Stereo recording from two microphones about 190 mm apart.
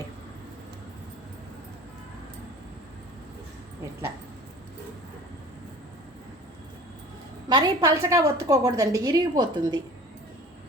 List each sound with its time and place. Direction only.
7.4 s a woman's voice: 20° right (ahead or behind)